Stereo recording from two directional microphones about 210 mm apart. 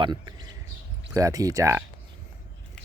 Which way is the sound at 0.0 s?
20° right (ahead or behind).